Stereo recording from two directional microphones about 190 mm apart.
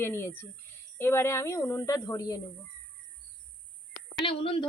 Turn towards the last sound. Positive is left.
turn(degrees=25)  # may be behind; listen again after turning